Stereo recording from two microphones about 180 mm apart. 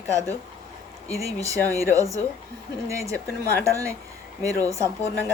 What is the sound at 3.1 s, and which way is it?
Speech, 10° left (ahead or behind).